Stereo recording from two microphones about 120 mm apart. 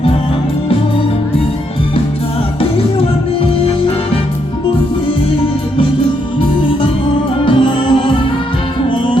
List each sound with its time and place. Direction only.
2.6 s music: 55° left (ahead or behind)
7.4 s music: 45° left (ahead or behind)